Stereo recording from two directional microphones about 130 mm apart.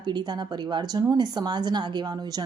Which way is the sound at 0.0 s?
35° right (ahead or behind).